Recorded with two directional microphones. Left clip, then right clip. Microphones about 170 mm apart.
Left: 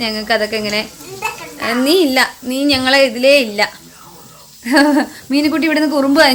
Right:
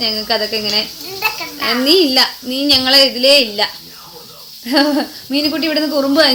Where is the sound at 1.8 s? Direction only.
65° left (ahead or behind).